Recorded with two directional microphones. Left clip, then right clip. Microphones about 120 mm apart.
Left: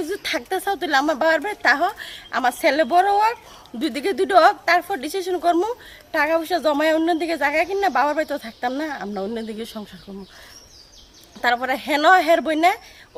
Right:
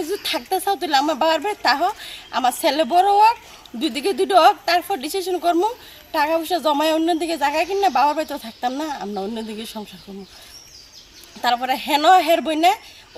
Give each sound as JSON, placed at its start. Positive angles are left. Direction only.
{"t": 0.0, "sound": "a woman's voice", "side_deg": 5}
{"t": 11.3, "sound": "a woman's voice", "side_deg": 5}